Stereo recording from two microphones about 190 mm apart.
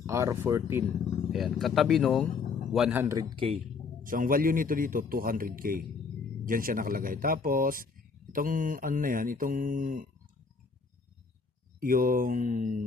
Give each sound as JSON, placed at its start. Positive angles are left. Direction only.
{"t": 0.0, "sound": "speech", "side_deg": -15}
{"t": 1.3, "sound": "a man's voice", "side_deg": 0}
{"t": 3.3, "sound": "speech", "side_deg": -30}
{"t": 4.0, "sound": "a man's voice", "side_deg": -45}
{"t": 11.8, "sound": "a man's voice", "side_deg": -45}